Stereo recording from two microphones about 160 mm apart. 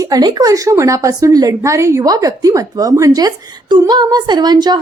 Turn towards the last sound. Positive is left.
turn(degrees=-25)  # may be behind; listen again after turning